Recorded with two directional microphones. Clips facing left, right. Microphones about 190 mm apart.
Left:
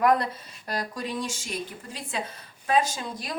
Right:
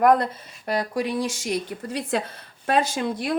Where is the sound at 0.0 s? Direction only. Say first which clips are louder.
Right 4 dB; 55° right (ahead or behind).